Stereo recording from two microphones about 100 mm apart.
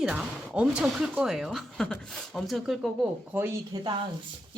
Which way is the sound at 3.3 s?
25° right (ahead or behind).